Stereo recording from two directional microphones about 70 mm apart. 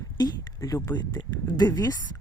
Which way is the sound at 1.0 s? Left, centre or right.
Left.